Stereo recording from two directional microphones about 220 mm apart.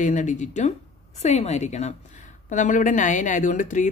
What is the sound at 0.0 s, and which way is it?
A woman's voice, 35° left (ahead or behind).